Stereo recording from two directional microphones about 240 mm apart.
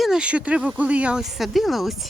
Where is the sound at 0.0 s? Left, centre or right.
Centre.